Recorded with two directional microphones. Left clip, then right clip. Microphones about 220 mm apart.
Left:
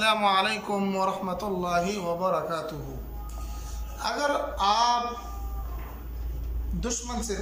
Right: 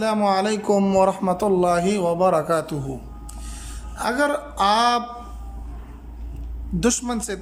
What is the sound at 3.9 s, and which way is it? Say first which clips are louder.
A man's voice: right 5 dB; 40° right (ahead or behind).